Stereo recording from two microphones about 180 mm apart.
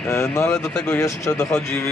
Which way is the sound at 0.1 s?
15° left (ahead or behind).